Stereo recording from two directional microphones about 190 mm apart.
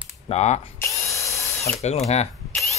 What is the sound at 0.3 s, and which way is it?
Speech, 35° left (ahead or behind).